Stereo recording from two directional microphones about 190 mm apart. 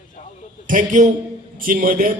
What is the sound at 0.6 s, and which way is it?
A man's voice, 45° right (ahead or behind).